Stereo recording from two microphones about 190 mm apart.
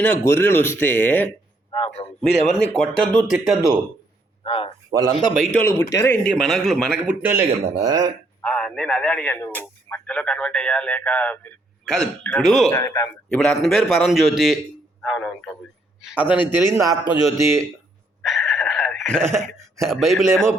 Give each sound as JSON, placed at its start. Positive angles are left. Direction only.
{"t": 0.0, "sound": "speech", "side_deg": 10}
{"t": 2.0, "sound": "a man's voice", "side_deg": 20}
{"t": 2.5, "sound": "a man's voice", "side_deg": 5}
{"t": 4.4, "sound": "a man's voice", "side_deg": 30}
{"t": 4.9, "sound": "a man's voice", "side_deg": -20}
{"t": 5.4, "sound": "a man's voice", "side_deg": 10}
{"t": 8.4, "sound": "a man's voice", "side_deg": 5}
{"t": 12.7, "sound": "speech", "side_deg": 15}
{"t": 13.3, "sound": "a man's voice", "side_deg": 5}
{"t": 18.2, "sound": "a sound", "side_deg": 0}
{"t": 19.9, "sound": "a man's voice", "side_deg": 0}